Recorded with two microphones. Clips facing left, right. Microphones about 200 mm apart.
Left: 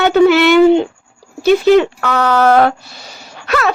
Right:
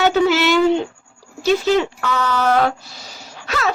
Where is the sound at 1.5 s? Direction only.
60° left (ahead or behind).